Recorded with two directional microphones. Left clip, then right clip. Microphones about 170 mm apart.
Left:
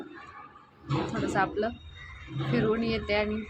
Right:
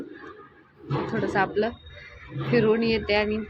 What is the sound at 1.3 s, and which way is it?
A man's voice, 15° right (ahead or behind).